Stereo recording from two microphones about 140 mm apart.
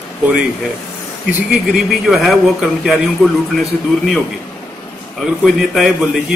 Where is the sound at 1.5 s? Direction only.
Centre (ahead or behind).